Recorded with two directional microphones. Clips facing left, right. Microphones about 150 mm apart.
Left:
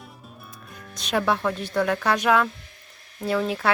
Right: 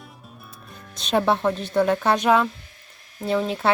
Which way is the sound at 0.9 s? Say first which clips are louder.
Right 3 dB; 25° right (ahead or behind).